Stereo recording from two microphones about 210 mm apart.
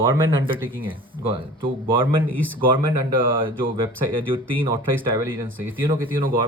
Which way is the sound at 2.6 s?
25° right (ahead or behind).